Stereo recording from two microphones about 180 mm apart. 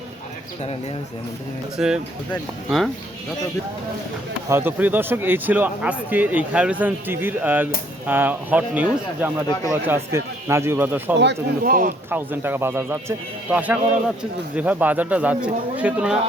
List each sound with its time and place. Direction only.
1.8 s speech: 5° right (ahead or behind)
4.4 s a man's voice: 10° right (ahead or behind)
11.6 s speech: 50° right (ahead or behind)
12.1 s a man's voice: 10° right (ahead or behind)